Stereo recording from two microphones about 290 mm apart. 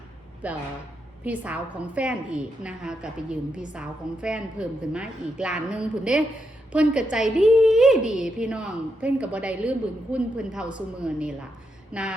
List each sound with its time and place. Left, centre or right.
0.4 s a woman's voice: centre
8.0 s speech: left
8.4 s a woman's voice: centre